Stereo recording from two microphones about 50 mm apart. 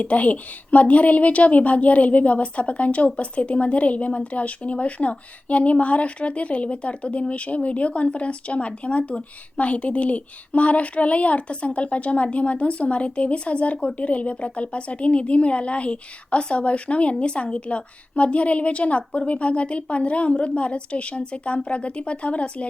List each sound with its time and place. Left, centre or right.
0.0 s a woman's voice: left